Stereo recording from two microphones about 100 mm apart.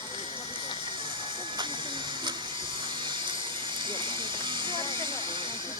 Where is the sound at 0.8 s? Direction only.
55° right (ahead or behind).